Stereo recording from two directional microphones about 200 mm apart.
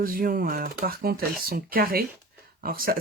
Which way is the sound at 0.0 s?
45° right (ahead or behind).